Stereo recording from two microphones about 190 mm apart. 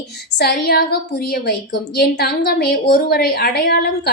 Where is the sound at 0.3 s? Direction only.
55° left (ahead or behind).